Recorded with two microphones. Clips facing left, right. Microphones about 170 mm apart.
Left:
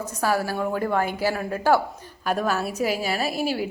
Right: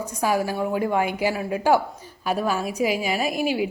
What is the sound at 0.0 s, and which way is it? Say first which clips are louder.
A woman's voice: right 1 dB; 15° right (ahead or behind).